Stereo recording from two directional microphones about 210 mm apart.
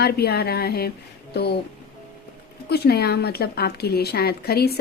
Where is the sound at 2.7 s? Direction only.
50° left (ahead or behind).